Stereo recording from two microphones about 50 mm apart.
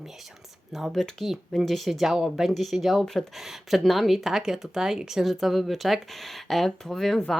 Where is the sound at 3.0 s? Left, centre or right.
Centre.